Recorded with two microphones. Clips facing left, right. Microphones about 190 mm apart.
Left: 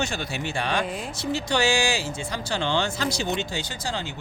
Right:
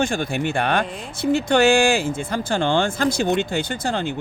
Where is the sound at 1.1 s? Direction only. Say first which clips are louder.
Right 10 dB; 55° right (ahead or behind).